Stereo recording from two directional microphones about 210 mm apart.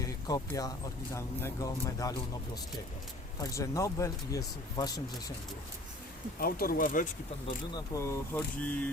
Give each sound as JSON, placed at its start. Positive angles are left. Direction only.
{"t": 0.0, "sound": "a sound", "side_deg": 15}
{"t": 1.1, "sound": "speech", "side_deg": 10}
{"t": 3.3, "sound": "speech", "side_deg": 15}
{"t": 6.4, "sound": "speech", "side_deg": 45}
{"t": 7.9, "sound": "speech", "side_deg": 15}